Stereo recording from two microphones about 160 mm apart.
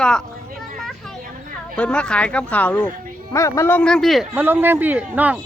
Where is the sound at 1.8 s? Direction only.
5° left (ahead or behind).